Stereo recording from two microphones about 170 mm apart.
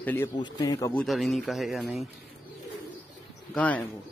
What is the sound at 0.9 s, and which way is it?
Speech, 5° left (ahead or behind).